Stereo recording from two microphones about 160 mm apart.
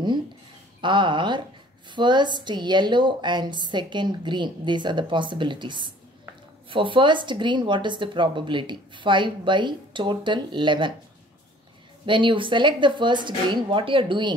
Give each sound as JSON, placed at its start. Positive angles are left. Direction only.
{"t": 0.7, "sound": "speech", "side_deg": -30}
{"t": 12.1, "sound": "speech", "side_deg": -30}